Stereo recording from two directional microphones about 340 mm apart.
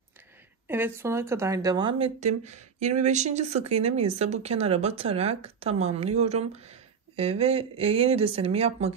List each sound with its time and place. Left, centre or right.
0.7 s speech: centre